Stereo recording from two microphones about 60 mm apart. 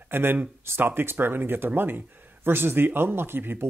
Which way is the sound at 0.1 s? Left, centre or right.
Right.